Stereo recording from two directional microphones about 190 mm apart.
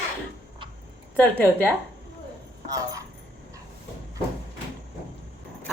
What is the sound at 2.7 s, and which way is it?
Speech, 20° right (ahead or behind).